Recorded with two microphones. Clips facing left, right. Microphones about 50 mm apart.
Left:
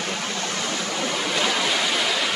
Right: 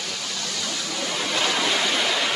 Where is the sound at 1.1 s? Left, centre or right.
Centre.